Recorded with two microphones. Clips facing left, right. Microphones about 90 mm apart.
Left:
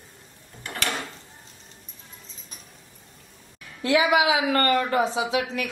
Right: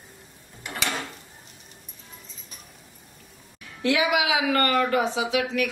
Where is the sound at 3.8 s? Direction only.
30° left (ahead or behind).